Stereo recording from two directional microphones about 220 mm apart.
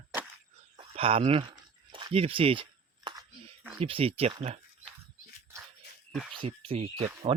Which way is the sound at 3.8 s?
25° right (ahead or behind).